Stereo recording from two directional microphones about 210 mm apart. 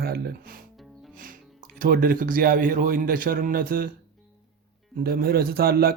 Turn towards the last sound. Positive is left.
turn(degrees=-45)  # may be behind; listen again after turning